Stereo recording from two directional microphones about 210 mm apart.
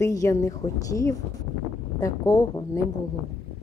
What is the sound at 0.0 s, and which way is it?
A woman's voice, 15° left (ahead or behind).